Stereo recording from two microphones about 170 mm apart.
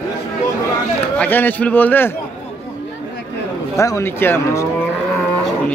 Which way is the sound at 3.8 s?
15° left (ahead or behind).